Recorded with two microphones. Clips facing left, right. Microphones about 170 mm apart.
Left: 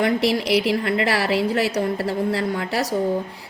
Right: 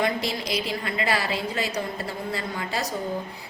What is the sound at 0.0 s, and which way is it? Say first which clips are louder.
A woman's voice: left 6 dB; 75° left (ahead or behind).